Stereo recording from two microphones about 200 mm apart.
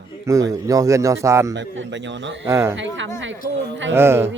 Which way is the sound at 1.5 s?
65° right (ahead or behind).